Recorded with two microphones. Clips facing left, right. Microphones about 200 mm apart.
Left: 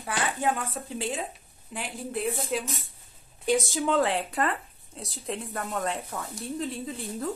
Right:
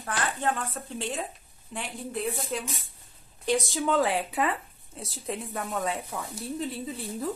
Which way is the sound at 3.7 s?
Centre (ahead or behind).